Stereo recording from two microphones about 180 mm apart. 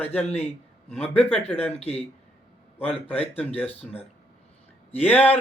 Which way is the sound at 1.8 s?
35° left (ahead or behind).